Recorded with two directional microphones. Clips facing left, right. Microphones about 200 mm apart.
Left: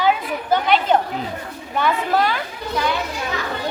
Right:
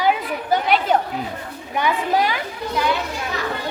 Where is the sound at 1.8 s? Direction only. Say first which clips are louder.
Left 1 dB; 10° right (ahead or behind).